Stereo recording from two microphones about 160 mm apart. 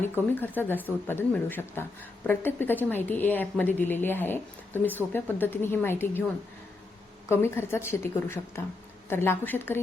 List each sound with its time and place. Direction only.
0.0 s speech: 10° left (ahead or behind)
7.3 s speech: 15° left (ahead or behind)